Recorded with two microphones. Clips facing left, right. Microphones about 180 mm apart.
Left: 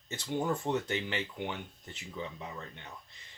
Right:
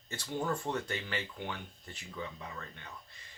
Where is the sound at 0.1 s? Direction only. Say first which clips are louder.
Left 3 dB; 20° left (ahead or behind).